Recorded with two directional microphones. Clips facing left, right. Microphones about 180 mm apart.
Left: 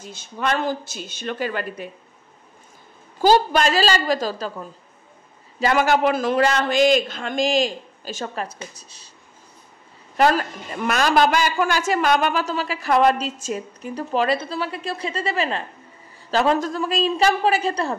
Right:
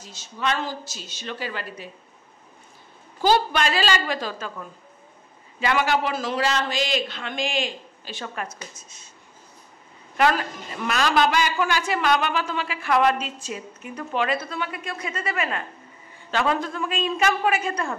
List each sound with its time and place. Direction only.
0.0 s speech: 55° left (ahead or behind)
3.2 s a man's voice: 45° left (ahead or behind)
10.1 s a man's voice: 40° left (ahead or behind)